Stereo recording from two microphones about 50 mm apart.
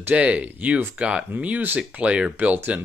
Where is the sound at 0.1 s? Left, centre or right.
Right.